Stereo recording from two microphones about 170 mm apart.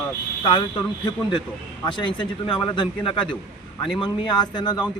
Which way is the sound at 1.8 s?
30° left (ahead or behind).